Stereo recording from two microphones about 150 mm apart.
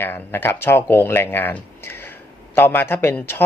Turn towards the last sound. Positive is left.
turn(degrees=15)  # may be behind; listen again after turning